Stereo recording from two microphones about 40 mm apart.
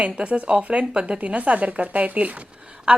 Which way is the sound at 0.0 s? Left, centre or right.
Right.